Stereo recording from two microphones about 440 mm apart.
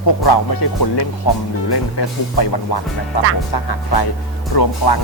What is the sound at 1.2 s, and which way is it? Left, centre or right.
Speech, left.